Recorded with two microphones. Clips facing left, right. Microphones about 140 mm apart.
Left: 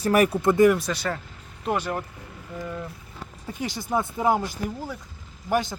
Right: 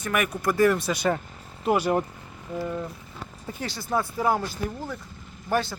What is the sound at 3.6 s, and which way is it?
Speech, 15° left (ahead or behind).